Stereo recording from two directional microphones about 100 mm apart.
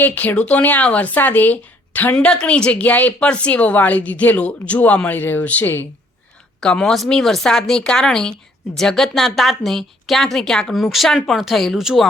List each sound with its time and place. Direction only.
0.0 s speech: 15° left (ahead or behind)
2.1 s speech: 10° left (ahead or behind)
6.6 s speech: 5° left (ahead or behind)